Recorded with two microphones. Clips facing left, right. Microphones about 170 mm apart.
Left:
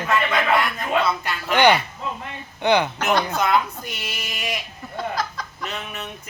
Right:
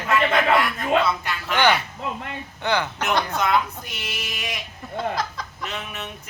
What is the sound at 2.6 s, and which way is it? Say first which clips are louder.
Speech: left 5 dB; 15° left (ahead or behind).